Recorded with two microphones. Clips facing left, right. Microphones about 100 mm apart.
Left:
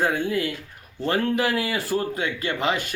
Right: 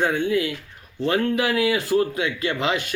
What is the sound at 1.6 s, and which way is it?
Speech, centre (ahead or behind).